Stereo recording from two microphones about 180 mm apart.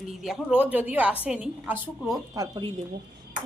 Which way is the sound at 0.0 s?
Centre (ahead or behind).